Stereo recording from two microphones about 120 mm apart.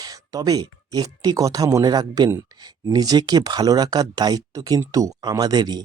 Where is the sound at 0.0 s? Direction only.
30° right (ahead or behind).